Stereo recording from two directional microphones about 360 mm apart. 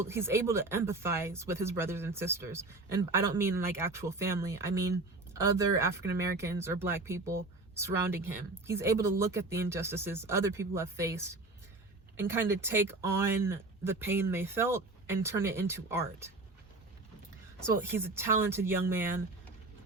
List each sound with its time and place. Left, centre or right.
0.0 s speech: centre
17.7 s speech: centre